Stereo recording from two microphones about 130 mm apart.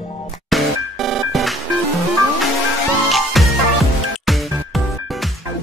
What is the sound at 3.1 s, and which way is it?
Music, centre (ahead or behind).